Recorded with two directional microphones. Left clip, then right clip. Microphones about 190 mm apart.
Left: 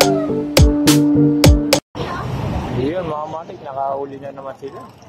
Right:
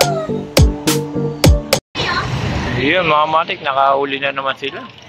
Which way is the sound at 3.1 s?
25° right (ahead or behind).